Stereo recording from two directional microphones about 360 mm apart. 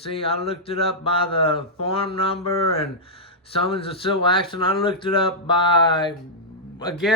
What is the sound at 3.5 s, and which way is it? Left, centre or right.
Speech, centre.